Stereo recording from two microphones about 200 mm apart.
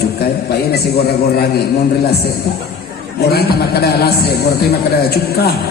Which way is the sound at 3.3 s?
50° left (ahead or behind).